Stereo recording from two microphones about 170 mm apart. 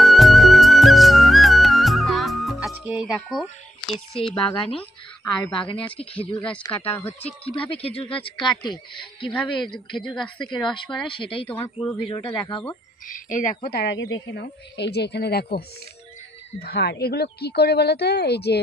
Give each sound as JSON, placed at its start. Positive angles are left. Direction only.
{"t": 0.0, "sound": "music", "side_deg": 0}
{"t": 3.2, "sound": "speech", "side_deg": 0}
{"t": 4.5, "sound": "speech", "side_deg": 35}
{"t": 7.4, "sound": "speech", "side_deg": 30}
{"t": 10.1, "sound": "speech", "side_deg": 5}
{"t": 10.6, "sound": "speech", "side_deg": 25}
{"t": 11.4, "sound": "speech", "side_deg": 10}
{"t": 12.1, "sound": "speech", "side_deg": 30}
{"t": 13.0, "sound": "speech", "side_deg": 50}
{"t": 13.7, "sound": "speech", "side_deg": 80}